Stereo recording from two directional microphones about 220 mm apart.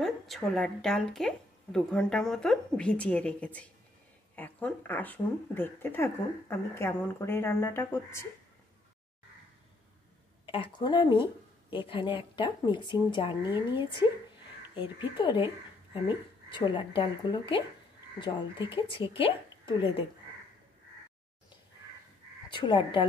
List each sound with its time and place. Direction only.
0.0 s a woman's voice: centre (ahead or behind)
10.4 s speech: 20° left (ahead or behind)
22.5 s speech: 20° left (ahead or behind)